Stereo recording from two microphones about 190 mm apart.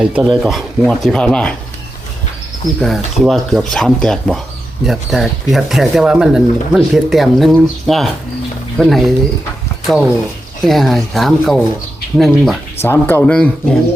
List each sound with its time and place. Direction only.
0.0 s speech: 5° right (ahead or behind)
2.8 s speech: centre (ahead or behind)
12.8 s speech: 10° left (ahead or behind)